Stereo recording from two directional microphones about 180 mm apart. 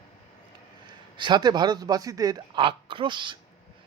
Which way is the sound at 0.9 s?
25° right (ahead or behind).